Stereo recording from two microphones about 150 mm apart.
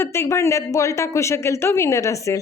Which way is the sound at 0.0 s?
15° left (ahead or behind).